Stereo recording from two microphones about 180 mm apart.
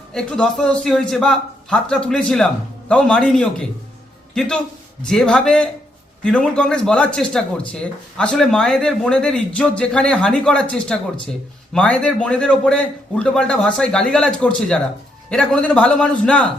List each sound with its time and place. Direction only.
0.1 s a man's voice: 5° left (ahead or behind)